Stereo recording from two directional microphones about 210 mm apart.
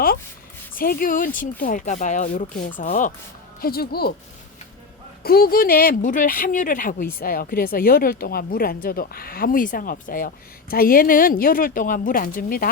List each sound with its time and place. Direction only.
0.8 s speech: 45° left (ahead or behind)
5.2 s speech: 45° left (ahead or behind)